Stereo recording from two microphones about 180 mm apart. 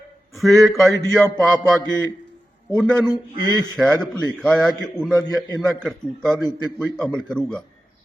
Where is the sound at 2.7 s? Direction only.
5° left (ahead or behind).